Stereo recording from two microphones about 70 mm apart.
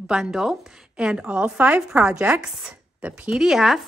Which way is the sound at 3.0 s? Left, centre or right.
Right.